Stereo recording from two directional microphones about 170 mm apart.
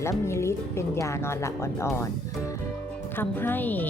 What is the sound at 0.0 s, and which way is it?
Speech, 15° left (ahead or behind).